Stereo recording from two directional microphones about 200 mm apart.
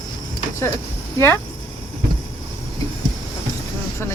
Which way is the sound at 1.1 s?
10° left (ahead or behind).